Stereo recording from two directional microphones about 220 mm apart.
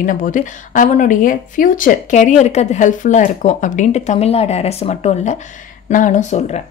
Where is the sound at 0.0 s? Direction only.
35° left (ahead or behind).